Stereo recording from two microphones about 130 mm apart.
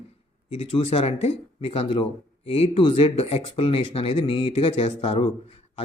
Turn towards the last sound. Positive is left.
turn(degrees=45)  # may be behind; listen again after turning